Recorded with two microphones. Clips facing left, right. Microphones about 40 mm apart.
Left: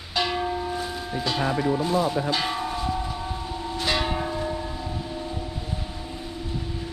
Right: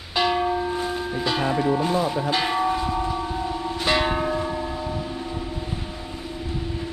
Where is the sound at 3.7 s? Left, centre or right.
Centre.